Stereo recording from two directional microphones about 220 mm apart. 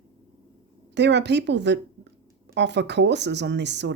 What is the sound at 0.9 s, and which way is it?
A woman's voice, 50° right (ahead or behind).